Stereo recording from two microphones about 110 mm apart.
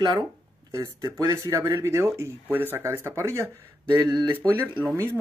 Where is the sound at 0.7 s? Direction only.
30° right (ahead or behind).